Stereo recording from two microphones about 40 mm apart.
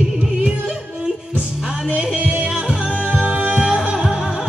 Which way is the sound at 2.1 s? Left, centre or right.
Right.